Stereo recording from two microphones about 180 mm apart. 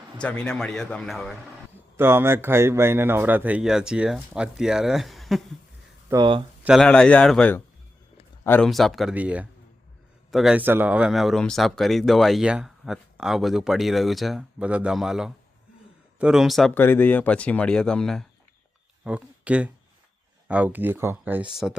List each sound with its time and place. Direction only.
0.2 s speech: 5° left (ahead or behind)
2.0 s speech: 15° right (ahead or behind)
6.1 s speech: 25° right (ahead or behind)
6.7 s speech: 5° left (ahead or behind)